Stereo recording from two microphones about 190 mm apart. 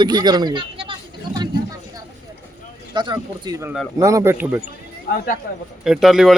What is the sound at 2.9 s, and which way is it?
A man's voice, 20° right (ahead or behind).